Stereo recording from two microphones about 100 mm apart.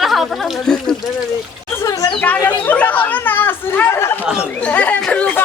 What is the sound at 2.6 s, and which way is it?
Speech, 15° left (ahead or behind).